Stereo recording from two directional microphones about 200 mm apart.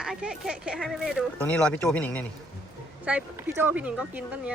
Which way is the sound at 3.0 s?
5° right (ahead or behind).